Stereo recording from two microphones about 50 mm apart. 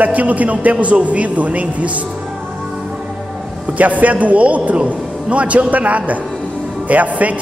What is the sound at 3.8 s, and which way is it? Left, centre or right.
A man's voice, right.